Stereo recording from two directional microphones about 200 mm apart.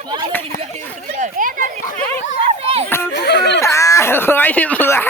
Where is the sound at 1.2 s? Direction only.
40° right (ahead or behind).